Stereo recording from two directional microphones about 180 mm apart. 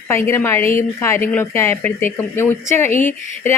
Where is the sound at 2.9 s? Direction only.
45° left (ahead or behind).